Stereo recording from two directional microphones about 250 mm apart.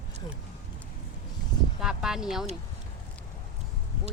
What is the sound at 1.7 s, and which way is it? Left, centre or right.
Speech, centre.